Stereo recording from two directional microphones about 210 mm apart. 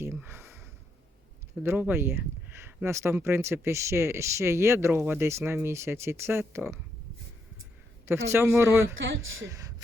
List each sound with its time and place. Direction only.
0.0 s a sound: 10° right (ahead or behind)
1.6 s speech: 10° right (ahead or behind)
8.3 s speech: 10° right (ahead or behind)
9.0 s speech: 65° right (ahead or behind)
9.4 s speech: 15° right (ahead or behind)